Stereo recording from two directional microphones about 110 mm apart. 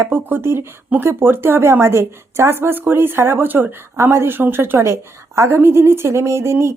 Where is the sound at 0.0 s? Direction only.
20° right (ahead or behind).